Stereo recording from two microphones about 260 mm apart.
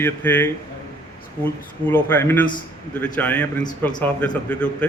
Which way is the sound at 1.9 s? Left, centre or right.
Centre.